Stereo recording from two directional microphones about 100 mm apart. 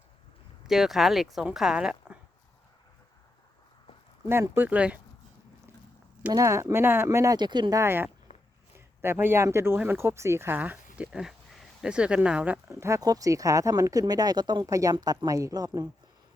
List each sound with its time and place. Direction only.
0.7 s speech: 5° right (ahead or behind)
4.3 s speech: 20° right (ahead or behind)
6.3 s speech: 30° right (ahead or behind)
7.3 s speech: 45° right (ahead or behind)
7.8 s speech: 25° right (ahead or behind)
12.6 s speech: 25° right (ahead or behind)
13.0 s speech: 40° right (ahead or behind)